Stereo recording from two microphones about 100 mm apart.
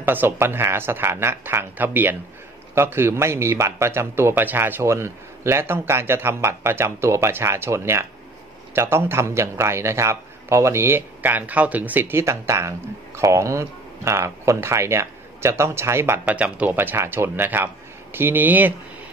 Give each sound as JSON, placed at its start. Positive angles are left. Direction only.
{"t": 0.0, "sound": "a man's voice", "side_deg": -20}
{"t": 16.3, "sound": "a man's voice", "side_deg": -15}